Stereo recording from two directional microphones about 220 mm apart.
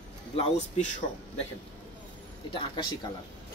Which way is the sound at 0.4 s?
30° left (ahead or behind).